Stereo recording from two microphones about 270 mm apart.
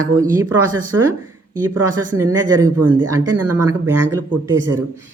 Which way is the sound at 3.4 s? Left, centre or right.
Right.